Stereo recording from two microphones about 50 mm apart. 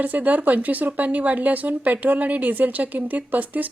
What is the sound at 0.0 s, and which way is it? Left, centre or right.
A woman's voice, right.